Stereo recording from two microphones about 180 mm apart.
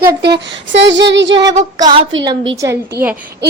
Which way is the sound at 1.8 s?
25° right (ahead or behind).